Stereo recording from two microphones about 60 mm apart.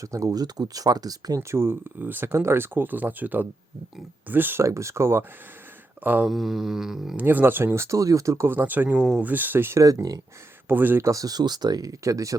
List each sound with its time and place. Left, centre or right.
0.0 s speech: right
1.4 s speech: right
2.0 s speech: right
4.6 s speech: right
6.0 s speech: right
6.2 s a sound: centre
7.2 s speech: right
8.4 s speech: right
9.7 s speech: right
10.7 s speech: right
11.0 s speech: right